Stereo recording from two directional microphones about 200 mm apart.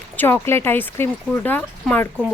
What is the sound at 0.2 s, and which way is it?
Speech, 10° left (ahead or behind).